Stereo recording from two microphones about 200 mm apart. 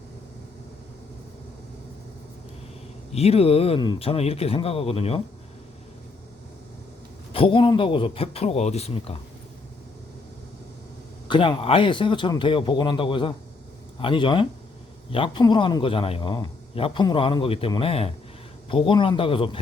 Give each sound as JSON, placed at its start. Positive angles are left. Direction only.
{"t": 3.1, "sound": "a man's voice", "side_deg": 30}
{"t": 7.3, "sound": "a man's voice", "side_deg": 25}
{"t": 11.3, "sound": "a man's voice", "side_deg": 25}